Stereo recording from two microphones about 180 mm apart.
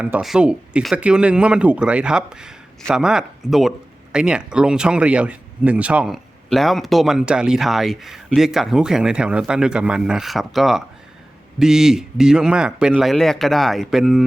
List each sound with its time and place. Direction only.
0.0 s speech: 5° right (ahead or behind)